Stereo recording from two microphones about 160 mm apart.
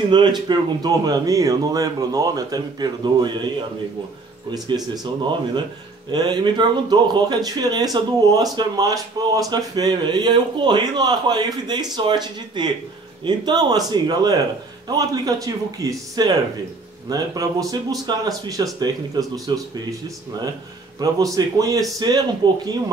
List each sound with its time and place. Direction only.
0.1 s speech: 25° right (ahead or behind)
4.5 s speech: 30° right (ahead or behind)
6.1 s speech: 25° right (ahead or behind)
21.0 s speech: 20° right (ahead or behind)